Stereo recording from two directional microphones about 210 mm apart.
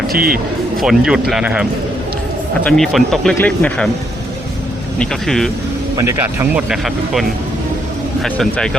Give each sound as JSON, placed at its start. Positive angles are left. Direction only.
{"t": 0.1, "sound": "speech", "side_deg": -45}
{"t": 0.8, "sound": "speech", "side_deg": -5}
{"t": 2.6, "sound": "speech", "side_deg": 0}
{"t": 4.9, "sound": "speech", "side_deg": 0}
{"t": 6.0, "sound": "speech", "side_deg": -10}